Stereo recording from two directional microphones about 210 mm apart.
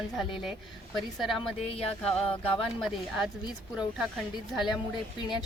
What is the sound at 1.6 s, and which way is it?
Music, 30° left (ahead or behind).